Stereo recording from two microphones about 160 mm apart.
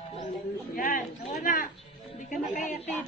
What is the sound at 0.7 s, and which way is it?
Speech, 60° left (ahead or behind).